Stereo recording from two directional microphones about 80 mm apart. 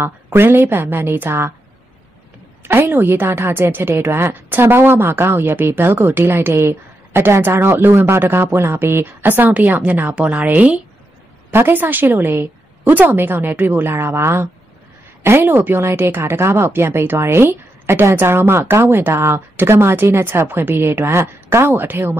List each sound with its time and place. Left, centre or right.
0.0 s speech: right
2.6 s a woman's voice: right